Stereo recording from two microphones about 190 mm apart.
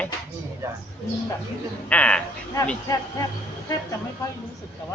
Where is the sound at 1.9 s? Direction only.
5° left (ahead or behind).